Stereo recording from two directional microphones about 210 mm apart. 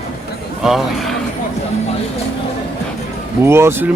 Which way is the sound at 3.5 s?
10° right (ahead or behind).